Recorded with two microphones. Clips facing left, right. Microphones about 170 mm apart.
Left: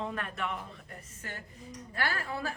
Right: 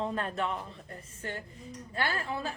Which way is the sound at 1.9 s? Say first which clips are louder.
Right 2 dB; 25° right (ahead or behind).